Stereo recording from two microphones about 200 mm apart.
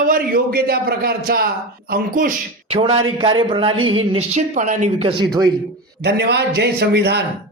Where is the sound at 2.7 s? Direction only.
30° right (ahead or behind).